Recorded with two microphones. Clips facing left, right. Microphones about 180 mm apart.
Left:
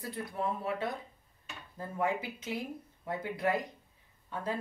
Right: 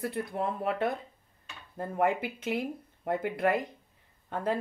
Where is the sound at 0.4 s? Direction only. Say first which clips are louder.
Right 4 dB; 60° right (ahead or behind).